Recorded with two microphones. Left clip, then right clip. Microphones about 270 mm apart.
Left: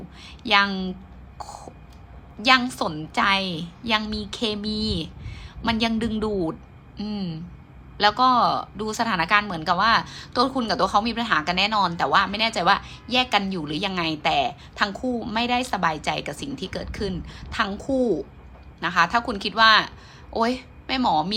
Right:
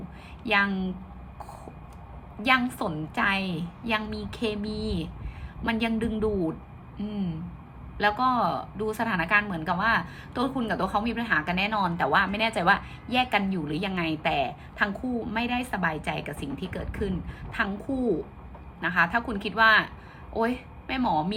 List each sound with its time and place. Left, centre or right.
0.4 s a woman's voice: centre
2.4 s a woman's voice: centre